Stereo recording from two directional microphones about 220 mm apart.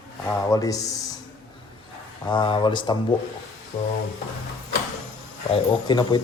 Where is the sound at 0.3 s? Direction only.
15° left (ahead or behind).